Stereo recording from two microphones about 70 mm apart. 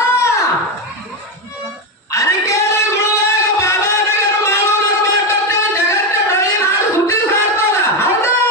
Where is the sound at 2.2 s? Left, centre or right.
Left.